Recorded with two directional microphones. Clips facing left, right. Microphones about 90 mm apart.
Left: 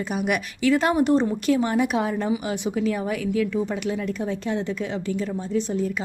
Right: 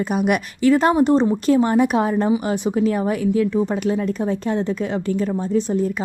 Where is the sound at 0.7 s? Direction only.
35° right (ahead or behind).